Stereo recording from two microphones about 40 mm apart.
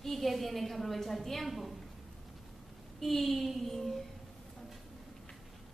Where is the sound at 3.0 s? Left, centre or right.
Centre.